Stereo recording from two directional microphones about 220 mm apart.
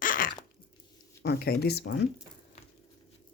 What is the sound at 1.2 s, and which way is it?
Speech, 45° left (ahead or behind).